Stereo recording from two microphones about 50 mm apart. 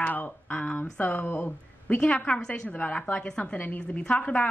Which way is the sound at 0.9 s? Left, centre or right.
Left.